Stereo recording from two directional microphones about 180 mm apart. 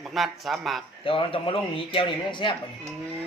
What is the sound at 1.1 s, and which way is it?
A man's voice, 30° left (ahead or behind).